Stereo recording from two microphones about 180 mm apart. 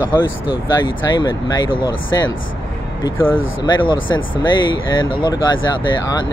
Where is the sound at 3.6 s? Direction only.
25° left (ahead or behind).